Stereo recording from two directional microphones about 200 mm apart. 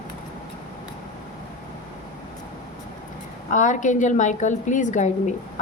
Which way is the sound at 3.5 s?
40° left (ahead or behind).